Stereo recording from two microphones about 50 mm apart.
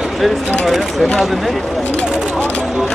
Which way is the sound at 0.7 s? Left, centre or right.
Centre.